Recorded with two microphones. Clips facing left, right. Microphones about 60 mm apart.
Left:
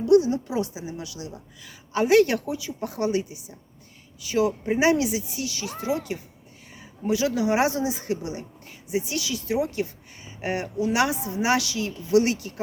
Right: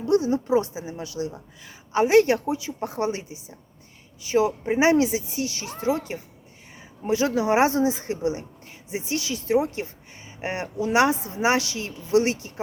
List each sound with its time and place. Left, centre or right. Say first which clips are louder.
0.0 s a woman's voice: left 3 dB; right